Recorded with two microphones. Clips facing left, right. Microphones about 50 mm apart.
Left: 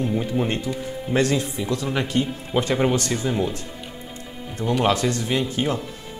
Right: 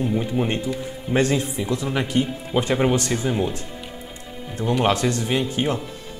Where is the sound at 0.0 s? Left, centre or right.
Centre.